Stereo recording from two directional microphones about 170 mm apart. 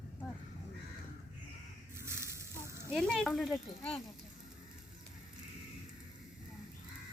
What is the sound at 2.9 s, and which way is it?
Speech, centre (ahead or behind).